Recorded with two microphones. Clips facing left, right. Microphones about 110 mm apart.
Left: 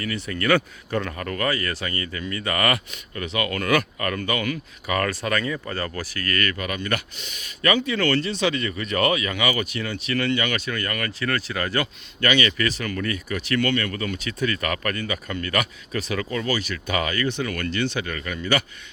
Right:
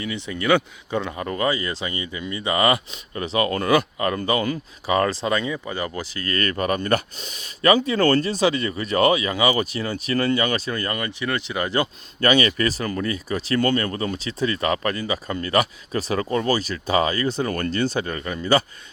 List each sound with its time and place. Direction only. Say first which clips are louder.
0.0 s speech: even; 20° right (ahead or behind)
12.2 s speech: right 3 dB; 35° right (ahead or behind)